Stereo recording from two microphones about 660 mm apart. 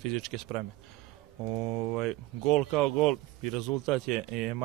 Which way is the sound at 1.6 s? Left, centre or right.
Right.